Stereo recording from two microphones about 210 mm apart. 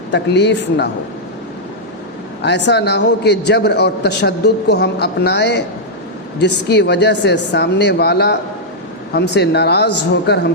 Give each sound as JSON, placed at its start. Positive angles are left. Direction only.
{"t": 0.1, "sound": "a woman's voice", "side_deg": 55}
{"t": 2.4, "sound": "a man's voice", "side_deg": 55}